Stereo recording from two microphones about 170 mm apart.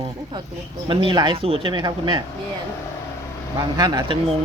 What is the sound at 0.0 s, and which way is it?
Speech, 30° right (ahead or behind).